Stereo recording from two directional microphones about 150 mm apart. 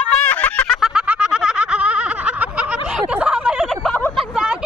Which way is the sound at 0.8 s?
5° right (ahead or behind).